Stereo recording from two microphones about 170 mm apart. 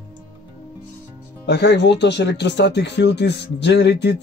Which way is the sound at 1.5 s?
85° left.